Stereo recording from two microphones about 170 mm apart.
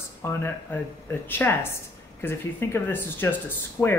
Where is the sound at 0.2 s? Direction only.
15° left (ahead or behind).